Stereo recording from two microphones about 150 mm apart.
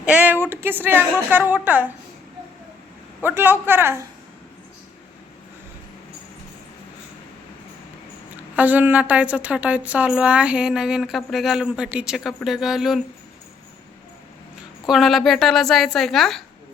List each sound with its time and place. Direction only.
0.0 s a sound: 10° right (ahead or behind)
0.5 s a woman's voice: 15° right (ahead or behind)
3.2 s a woman's voice: 15° right (ahead or behind)
8.5 s a woman's voice: 10° right (ahead or behind)
14.8 s a woman's voice: centre (ahead or behind)